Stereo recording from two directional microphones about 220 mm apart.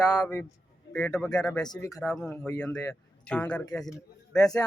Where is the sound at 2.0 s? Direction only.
Centre (ahead or behind).